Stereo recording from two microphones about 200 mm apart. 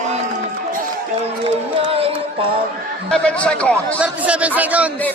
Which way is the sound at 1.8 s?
25° right (ahead or behind).